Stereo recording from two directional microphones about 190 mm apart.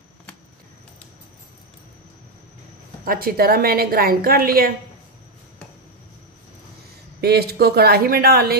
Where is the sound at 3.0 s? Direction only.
50° right (ahead or behind).